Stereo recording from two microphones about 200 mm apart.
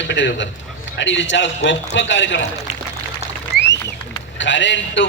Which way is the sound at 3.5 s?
50° right (ahead or behind).